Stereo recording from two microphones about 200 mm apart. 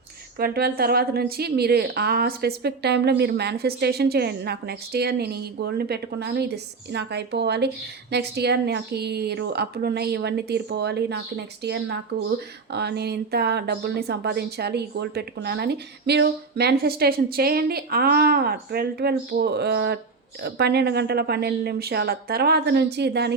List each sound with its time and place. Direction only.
0.3 s a woman's voice: 50° right (ahead or behind)